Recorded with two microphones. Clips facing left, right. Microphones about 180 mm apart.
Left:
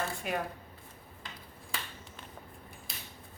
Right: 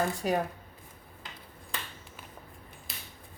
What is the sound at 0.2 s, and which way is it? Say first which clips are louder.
Speech: right 6 dB; 35° right (ahead or behind).